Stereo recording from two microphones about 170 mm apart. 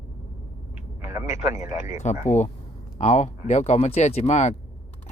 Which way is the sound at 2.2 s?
45° left (ahead or behind).